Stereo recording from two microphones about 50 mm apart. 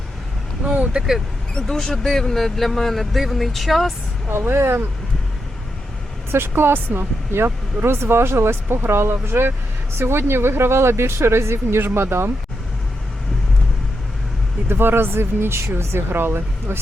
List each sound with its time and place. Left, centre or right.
1.5 s speech: centre
4.3 s speech: right
6.3 s speech: right
14.7 s speech: right